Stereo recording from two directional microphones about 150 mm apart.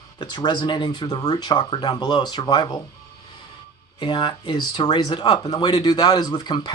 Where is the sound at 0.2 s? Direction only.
30° left (ahead or behind).